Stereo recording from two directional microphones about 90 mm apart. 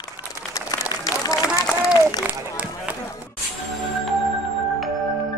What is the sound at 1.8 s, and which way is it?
Run, 45° left (ahead or behind).